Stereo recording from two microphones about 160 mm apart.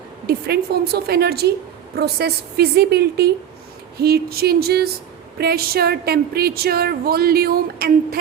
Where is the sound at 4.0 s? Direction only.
80° right.